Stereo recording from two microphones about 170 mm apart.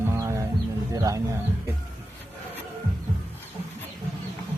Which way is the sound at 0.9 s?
20° right (ahead or behind).